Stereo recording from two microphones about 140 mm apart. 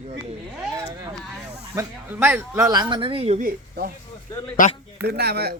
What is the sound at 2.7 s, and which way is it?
Speech, 30° right (ahead or behind).